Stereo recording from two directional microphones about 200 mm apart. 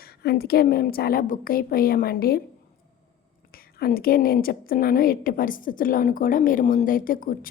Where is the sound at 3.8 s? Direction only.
45° left (ahead or behind).